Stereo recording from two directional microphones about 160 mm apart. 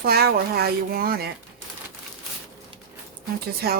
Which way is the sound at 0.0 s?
75° right (ahead or behind).